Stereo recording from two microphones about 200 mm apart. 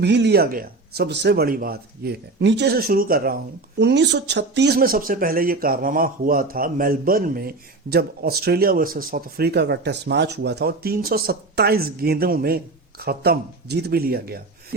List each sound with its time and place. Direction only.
0.0 s speech: 60° right (ahead or behind)
3.8 s speech: 60° right (ahead or behind)